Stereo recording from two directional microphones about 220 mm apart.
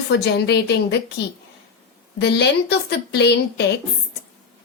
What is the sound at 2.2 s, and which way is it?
A woman's voice, 50° left (ahead or behind).